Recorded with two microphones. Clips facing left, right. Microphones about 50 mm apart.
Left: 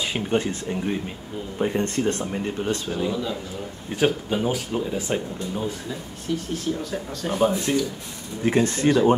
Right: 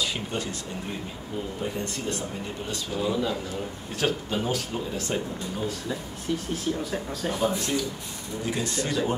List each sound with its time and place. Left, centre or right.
0.0 s speech: left
1.6 s speech: left
3.1 s a man's voice: centre
4.0 s speech: centre
5.9 s speech: centre
7.3 s speech: left